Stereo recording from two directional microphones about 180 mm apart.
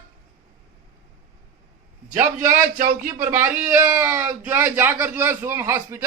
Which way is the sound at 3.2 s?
15° right (ahead or behind).